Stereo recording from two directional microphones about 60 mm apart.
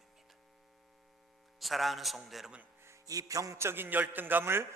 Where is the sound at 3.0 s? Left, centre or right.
Right.